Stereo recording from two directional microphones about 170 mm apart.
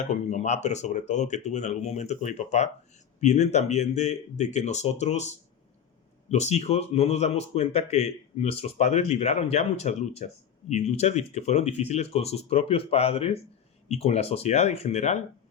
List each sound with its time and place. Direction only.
0.0 s speech: 45° left (ahead or behind)
6.3 s speech: 40° left (ahead or behind)